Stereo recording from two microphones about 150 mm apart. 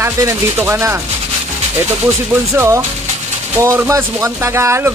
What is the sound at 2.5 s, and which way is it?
Speech, 15° right (ahead or behind).